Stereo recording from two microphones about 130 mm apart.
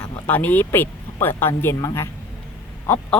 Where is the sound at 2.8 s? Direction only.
15° left (ahead or behind).